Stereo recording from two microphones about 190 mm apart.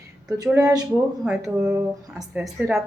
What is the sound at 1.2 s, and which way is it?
Speech, 5° right (ahead or behind).